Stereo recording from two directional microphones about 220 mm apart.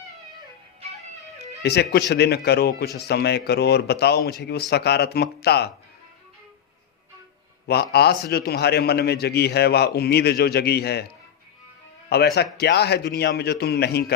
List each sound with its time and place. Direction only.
1.6 s a man's voice: 50° left (ahead or behind)
7.7 s a man's voice: 45° left (ahead or behind)
12.0 s a man's voice: 45° left (ahead or behind)